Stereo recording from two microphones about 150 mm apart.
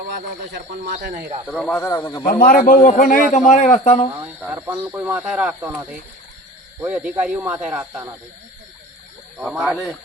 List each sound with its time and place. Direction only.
1.5 s speech: 5° left (ahead or behind)
2.4 s a man's voice: 65° left (ahead or behind)
4.4 s speech: 10° right (ahead or behind)
6.8 s speech: 10° right (ahead or behind)
9.4 s speech: centre (ahead or behind)